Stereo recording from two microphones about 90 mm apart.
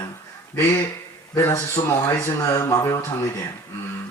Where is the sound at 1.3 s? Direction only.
30° left (ahead or behind).